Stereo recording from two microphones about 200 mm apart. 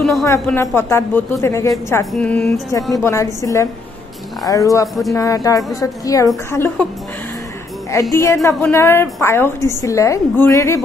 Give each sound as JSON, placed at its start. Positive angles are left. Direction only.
{"t": 0.2, "sound": "a woman's voice", "side_deg": 15}
{"t": 7.9, "sound": "a woman's voice", "side_deg": 15}